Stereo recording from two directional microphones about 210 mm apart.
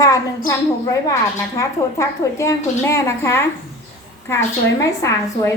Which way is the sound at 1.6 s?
15° left (ahead or behind).